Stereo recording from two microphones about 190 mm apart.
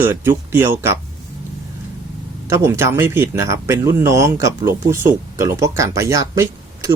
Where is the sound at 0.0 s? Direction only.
10° right (ahead or behind).